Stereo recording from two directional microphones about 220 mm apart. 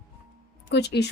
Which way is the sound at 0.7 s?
50° left (ahead or behind).